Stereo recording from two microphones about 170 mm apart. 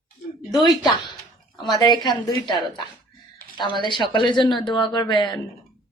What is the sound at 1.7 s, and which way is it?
A woman's voice, 25° left (ahead or behind).